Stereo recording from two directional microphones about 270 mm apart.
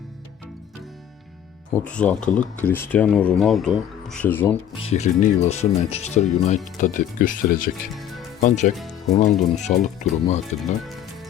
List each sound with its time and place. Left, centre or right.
1.7 s speech: centre
4.8 s speech: left
7.9 s music: centre
8.4 s speech: left
8.7 s speech: centre
9.0 s speech: left